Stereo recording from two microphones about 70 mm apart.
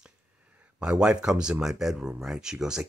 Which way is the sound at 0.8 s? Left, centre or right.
Centre.